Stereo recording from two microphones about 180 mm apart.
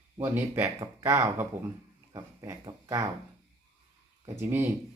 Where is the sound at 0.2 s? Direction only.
10° right (ahead or behind).